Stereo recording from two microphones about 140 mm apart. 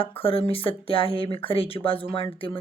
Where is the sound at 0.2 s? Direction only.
45° left (ahead or behind).